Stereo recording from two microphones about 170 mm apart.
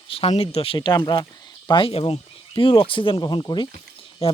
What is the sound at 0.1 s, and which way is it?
A man's voice, 35° left (ahead or behind).